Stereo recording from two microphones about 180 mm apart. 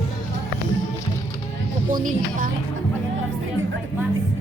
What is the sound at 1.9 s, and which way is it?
Speech, 50° right (ahead or behind).